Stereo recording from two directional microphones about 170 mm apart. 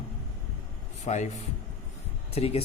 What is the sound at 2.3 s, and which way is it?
Speech, 35° left (ahead or behind).